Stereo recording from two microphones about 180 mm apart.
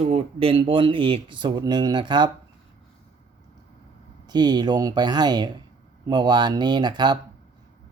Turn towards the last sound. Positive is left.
turn(degrees=-25)  # may be behind; listen again after turning